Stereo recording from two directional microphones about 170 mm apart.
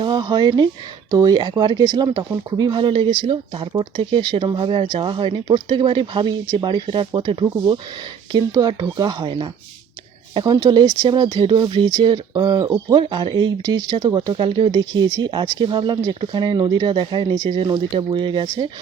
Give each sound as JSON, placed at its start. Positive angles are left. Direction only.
{"t": 0.0, "sound": "speech", "side_deg": -25}